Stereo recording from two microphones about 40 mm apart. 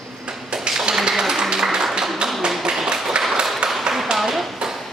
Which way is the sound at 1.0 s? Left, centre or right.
Centre.